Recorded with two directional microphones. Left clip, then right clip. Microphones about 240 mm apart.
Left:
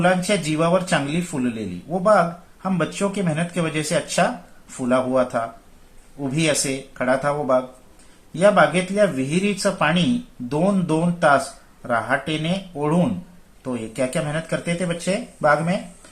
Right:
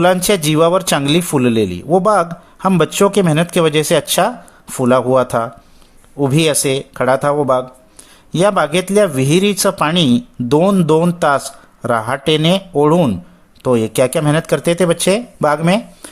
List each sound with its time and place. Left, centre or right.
0.0 s a man's voice: right